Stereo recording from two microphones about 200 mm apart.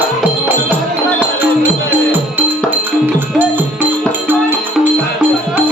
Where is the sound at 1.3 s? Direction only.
10° right (ahead or behind).